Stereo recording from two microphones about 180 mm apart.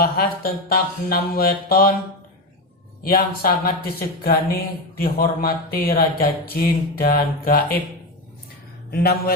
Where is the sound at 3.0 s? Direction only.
55° left (ahead or behind).